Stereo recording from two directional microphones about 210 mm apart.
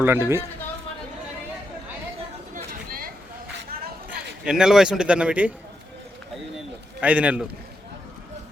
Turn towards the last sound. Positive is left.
turn(degrees=-5)  # may be behind; listen again after turning